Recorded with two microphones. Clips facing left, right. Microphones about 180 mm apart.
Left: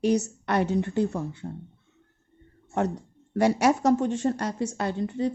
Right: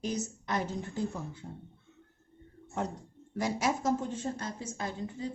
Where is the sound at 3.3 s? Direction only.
70° left (ahead or behind).